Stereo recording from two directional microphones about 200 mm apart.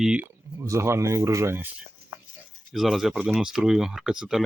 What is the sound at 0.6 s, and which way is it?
Speech, 15° right (ahead or behind).